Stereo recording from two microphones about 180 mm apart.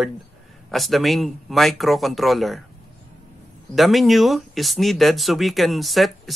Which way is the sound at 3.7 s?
Centre (ahead or behind).